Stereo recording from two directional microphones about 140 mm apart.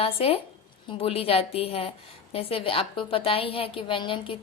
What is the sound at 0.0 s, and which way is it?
A woman's voice, 45° left (ahead or behind).